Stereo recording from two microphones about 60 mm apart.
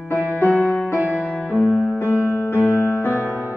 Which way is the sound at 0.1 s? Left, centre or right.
Left.